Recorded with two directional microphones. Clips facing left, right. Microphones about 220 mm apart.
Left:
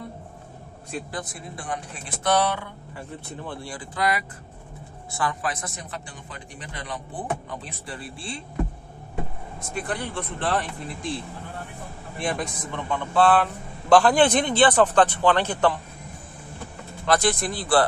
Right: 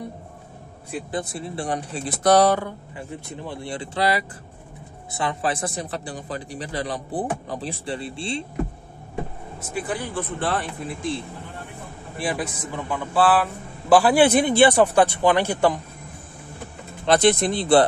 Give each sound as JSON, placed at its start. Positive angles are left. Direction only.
{"t": 1.3, "sound": "a man's voice", "side_deg": -30}
{"t": 3.4, "sound": "a man's voice", "side_deg": -25}
{"t": 9.8, "sound": "a man's voice", "side_deg": -5}
{"t": 17.0, "sound": "speech", "side_deg": -20}